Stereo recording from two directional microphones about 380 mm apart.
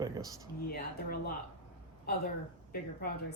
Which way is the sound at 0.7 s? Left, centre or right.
Left.